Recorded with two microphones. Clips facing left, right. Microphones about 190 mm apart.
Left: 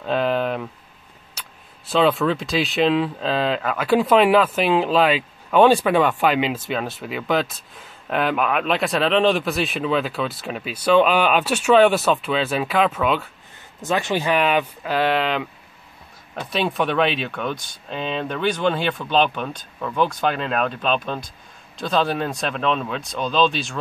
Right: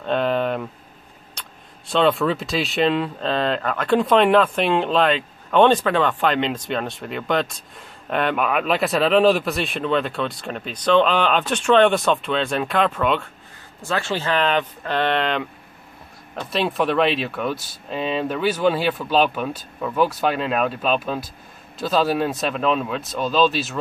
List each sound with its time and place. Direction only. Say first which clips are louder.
0.0 s a sound: even; centre (ahead or behind)
1.3 s speech: right 1 dB; 5° left (ahead or behind)
13.7 s speech: left 2 dB; 15° left (ahead or behind); by 23.8 s 5° right (ahead or behind)